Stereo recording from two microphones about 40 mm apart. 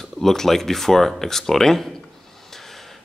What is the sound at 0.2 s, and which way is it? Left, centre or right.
Speech, centre.